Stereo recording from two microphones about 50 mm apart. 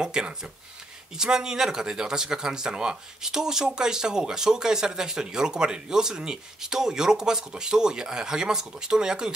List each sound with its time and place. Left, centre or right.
0.0 s speech: centre